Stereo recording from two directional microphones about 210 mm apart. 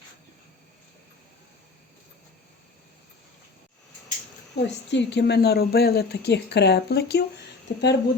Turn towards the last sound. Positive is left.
turn(degrees=55)  # may be behind; listen again after turning